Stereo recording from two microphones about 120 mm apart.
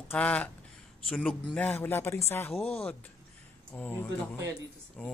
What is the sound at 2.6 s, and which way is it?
Speech, 55° left (ahead or behind).